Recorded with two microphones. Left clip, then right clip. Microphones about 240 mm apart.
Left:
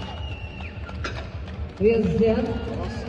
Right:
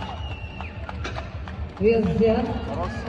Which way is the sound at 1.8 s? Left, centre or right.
Centre.